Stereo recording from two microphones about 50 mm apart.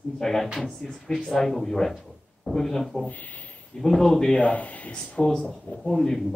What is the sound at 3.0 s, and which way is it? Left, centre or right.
Speech, left.